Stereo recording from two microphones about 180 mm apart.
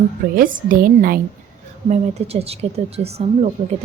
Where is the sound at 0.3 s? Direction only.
50° right (ahead or behind).